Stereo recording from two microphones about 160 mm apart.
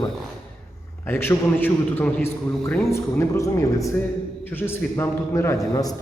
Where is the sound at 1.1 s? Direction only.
15° left (ahead or behind).